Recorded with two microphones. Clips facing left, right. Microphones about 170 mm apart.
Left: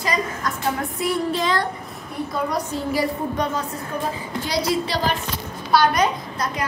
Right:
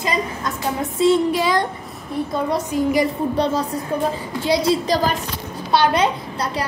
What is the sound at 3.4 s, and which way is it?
A woman's voice, 35° right (ahead or behind).